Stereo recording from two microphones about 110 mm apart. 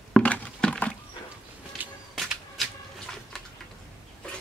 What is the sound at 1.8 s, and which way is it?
Whip, 15° right (ahead or behind).